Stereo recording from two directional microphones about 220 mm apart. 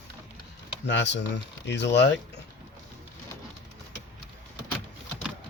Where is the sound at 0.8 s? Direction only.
55° left (ahead or behind).